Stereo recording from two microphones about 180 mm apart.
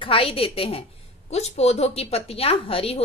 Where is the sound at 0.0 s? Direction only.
30° left (ahead or behind).